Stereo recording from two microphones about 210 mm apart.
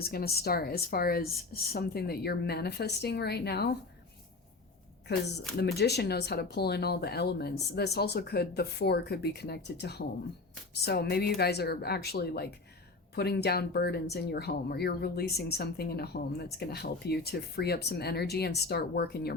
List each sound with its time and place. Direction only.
0.0 s speech: 45° left (ahead or behind)
5.5 s speech: 50° left (ahead or behind)